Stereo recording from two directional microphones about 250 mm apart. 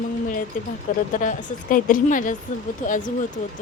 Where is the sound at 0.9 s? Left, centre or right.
Left.